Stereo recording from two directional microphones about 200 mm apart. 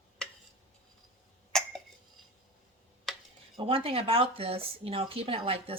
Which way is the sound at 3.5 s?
25° right (ahead or behind).